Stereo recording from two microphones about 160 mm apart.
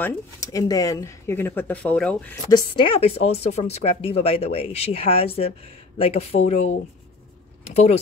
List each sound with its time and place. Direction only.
0.0 s speech: 20° left (ahead or behind)
2.5 s speech: 30° left (ahead or behind)